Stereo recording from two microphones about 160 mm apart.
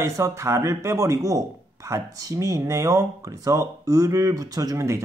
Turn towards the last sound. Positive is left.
turn(degrees=-20)  # may be behind; listen again after turning